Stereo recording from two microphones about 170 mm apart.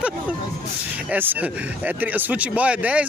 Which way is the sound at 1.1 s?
10° right (ahead or behind).